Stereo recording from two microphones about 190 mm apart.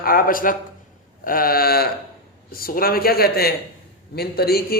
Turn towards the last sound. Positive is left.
turn(degrees=55)  # may be behind; listen again after turning